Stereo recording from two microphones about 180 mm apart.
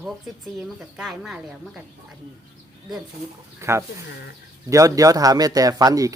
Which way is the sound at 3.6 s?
15° right (ahead or behind).